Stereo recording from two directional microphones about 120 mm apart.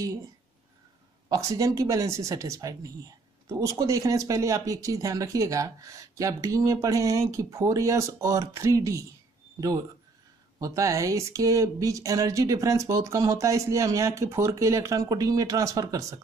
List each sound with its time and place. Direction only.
1.3 s speech: 25° right (ahead or behind)